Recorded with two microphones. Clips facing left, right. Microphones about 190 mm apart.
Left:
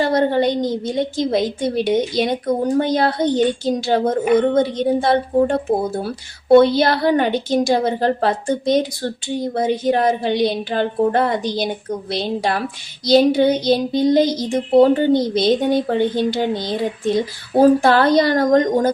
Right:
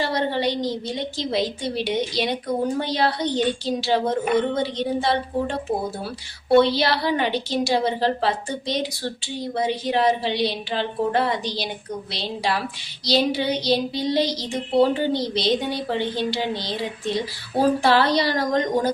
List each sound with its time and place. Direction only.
0.0 s a woman's voice: 50° left (ahead or behind)